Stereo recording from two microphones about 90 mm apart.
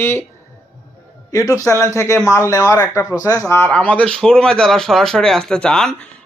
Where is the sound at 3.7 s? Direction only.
15° left (ahead or behind).